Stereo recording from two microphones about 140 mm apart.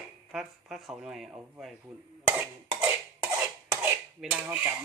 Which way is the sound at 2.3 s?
15° right (ahead or behind).